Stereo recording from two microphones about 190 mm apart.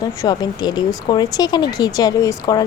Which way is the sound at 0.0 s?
20° left (ahead or behind).